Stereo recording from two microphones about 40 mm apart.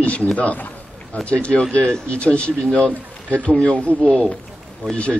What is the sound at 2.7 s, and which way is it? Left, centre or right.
A man's voice, left.